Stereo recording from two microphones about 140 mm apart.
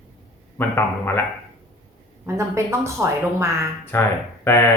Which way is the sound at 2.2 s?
20° right (ahead or behind).